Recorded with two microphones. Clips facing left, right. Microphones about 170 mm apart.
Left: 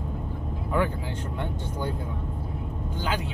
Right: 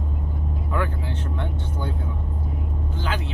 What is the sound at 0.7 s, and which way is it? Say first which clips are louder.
Speech: left 2 dB; 15° left (ahead or behind).